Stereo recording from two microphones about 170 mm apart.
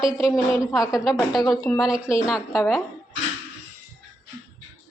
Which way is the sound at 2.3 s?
15° left (ahead or behind).